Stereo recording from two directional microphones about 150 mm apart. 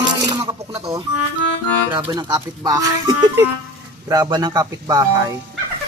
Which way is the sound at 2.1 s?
30° right (ahead or behind).